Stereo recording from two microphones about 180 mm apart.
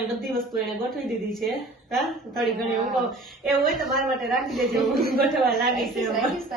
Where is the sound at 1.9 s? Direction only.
Centre (ahead or behind).